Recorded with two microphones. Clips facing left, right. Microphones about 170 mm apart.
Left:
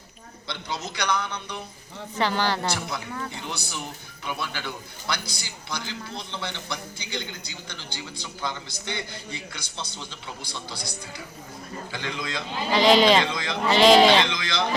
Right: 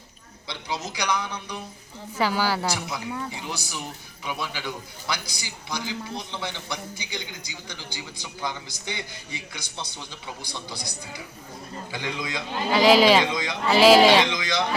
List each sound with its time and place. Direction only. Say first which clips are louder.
0.4 s a man's voice: right 1 dB; 10° right (ahead or behind)
13.2 s a man's voice: right 2 dB; 15° right (ahead or behind)
13.7 s a man's voice: right 1 dB; 5° right (ahead or behind)
14.3 s a man's voice: right 2 dB; 20° right (ahead or behind)